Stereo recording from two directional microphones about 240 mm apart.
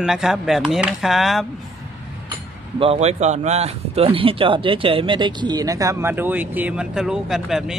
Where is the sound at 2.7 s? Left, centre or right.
Right.